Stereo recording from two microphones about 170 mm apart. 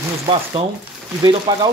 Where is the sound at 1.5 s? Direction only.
25° right (ahead or behind).